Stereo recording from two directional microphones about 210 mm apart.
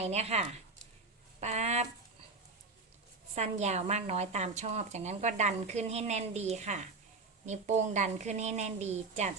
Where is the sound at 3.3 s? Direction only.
30° right (ahead or behind).